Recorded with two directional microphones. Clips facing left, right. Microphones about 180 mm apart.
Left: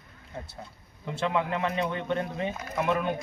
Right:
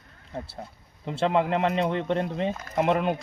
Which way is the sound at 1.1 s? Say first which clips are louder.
Right 5 dB; 35° right (ahead or behind).